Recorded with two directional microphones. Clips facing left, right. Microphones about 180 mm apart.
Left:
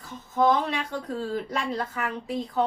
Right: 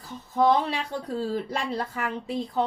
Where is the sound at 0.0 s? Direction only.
35° right (ahead or behind).